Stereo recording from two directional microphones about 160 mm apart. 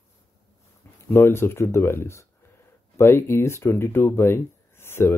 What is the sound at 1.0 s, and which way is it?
Speech, 15° left (ahead or behind).